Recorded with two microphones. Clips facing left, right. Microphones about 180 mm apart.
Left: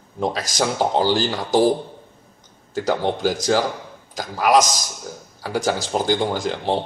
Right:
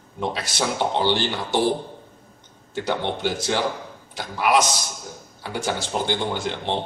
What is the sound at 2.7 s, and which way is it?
Speech, 40° left (ahead or behind).